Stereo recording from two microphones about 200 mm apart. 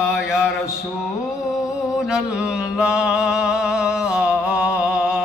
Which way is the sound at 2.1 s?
5° right (ahead or behind).